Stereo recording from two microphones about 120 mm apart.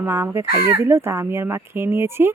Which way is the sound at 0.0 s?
20° right (ahead or behind).